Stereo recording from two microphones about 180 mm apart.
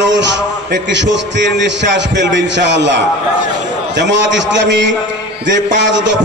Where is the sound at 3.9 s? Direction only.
80° right.